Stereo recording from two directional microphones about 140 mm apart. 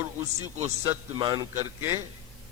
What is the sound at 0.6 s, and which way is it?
Speech, 20° right (ahead or behind).